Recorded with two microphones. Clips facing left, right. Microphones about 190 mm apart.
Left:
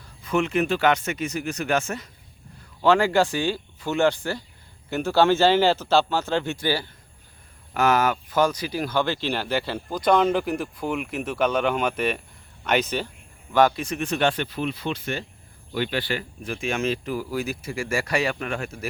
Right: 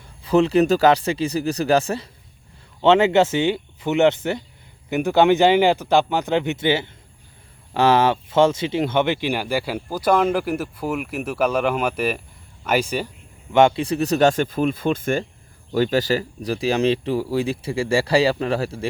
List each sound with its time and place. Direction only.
0.2 s speech: 35° right (ahead or behind)
2.8 s speech: 20° right (ahead or behind)
13.5 s speech: 25° right (ahead or behind)